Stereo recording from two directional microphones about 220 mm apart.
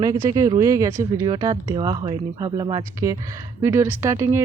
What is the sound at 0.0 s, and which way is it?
Speech, 15° right (ahead or behind).